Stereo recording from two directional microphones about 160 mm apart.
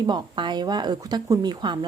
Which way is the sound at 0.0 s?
25° right (ahead or behind).